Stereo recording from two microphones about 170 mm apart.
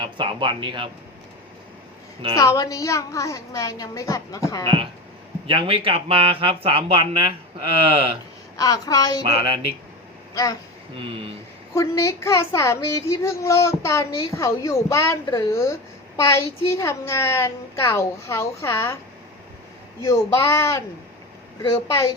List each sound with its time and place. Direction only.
0.0 s speech: 30° right (ahead or behind)
2.3 s a woman's voice: 20° left (ahead or behind)
4.6 s speech: 30° right (ahead or behind)
8.5 s a woman's voice: 20° left (ahead or behind)
10.3 s a woman's voice: 20° left (ahead or behind)
10.9 s speech: 35° right (ahead or behind)
11.7 s speech: 15° left (ahead or behind)
20.0 s a woman's voice: 15° left (ahead or behind)